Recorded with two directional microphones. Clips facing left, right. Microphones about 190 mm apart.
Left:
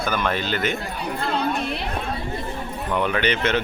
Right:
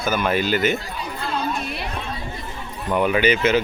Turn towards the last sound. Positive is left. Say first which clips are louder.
# right 4 dB
turn(degrees=-5)  # may be behind; listen again after turning